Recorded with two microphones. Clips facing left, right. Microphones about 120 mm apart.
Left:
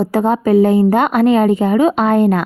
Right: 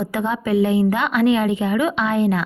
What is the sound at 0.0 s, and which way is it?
A woman's voice, 40° left (ahead or behind).